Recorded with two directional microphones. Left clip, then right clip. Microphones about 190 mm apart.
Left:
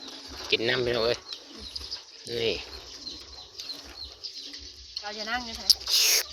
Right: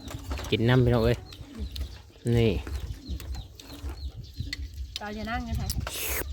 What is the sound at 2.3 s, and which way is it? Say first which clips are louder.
Speech: right 2 dB; 25° right (ahead or behind).